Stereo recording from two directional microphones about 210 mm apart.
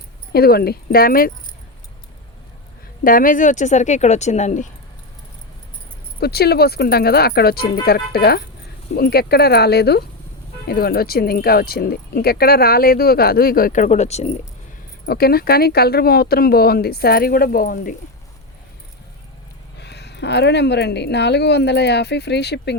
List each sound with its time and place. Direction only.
0.3 s speech: 45° left (ahead or behind)
3.0 s speech: 40° left (ahead or behind)
6.1 s speech: 50° left (ahead or behind); by 14.3 s 30° left (ahead or behind)
15.0 s speech: 45° left (ahead or behind)
19.8 s speech: 50° left (ahead or behind)